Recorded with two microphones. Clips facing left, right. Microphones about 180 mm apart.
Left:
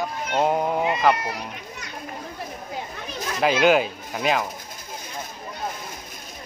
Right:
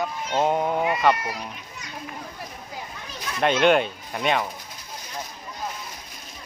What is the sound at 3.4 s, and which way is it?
Speech, 5° left (ahead or behind).